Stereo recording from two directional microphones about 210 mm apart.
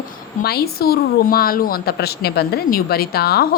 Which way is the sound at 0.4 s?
45° left (ahead or behind).